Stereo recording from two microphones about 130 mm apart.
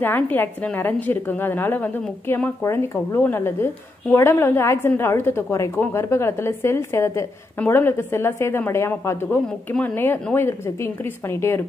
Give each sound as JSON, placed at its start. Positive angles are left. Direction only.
{"t": 0.0, "sound": "a woman's voice", "side_deg": 15}